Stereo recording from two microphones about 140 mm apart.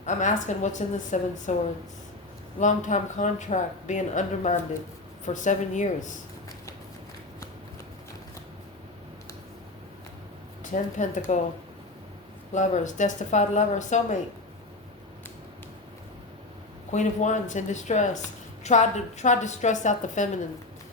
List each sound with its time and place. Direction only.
0.0 s a woman's voice: 65° left (ahead or behind)
2.6 s a woman's voice: 60° left (ahead or behind)
10.6 s a woman's voice: 65° left (ahead or behind)
12.5 s a woman's voice: 60° left (ahead or behind)
16.9 s a woman's voice: 60° left (ahead or behind)